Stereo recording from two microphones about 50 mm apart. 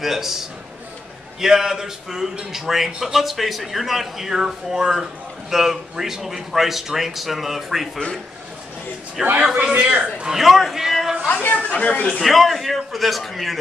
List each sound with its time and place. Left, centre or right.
0.0 s a man's voice: centre
9.4 s a man's voice: centre
10.2 s a man's voice: centre
11.4 s speech: left
12.2 s a man's voice: centre